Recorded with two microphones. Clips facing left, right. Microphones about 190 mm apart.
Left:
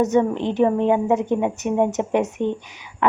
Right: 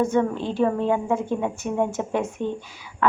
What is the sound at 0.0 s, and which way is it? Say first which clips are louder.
A woman's voice: left 3 dB; 20° left (ahead or behind).